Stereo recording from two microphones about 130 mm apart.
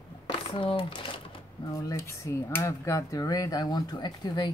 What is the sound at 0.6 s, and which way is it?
Speech, 45° left (ahead or behind).